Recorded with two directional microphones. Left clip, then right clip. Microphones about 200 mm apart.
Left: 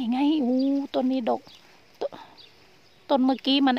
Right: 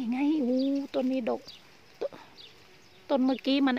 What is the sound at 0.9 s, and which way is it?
Speech, 20° left (ahead or behind).